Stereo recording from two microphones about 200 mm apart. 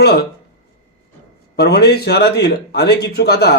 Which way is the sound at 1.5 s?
50° left (ahead or behind).